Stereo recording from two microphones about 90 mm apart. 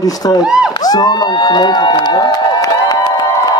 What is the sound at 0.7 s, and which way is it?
Speech, 50° left (ahead or behind).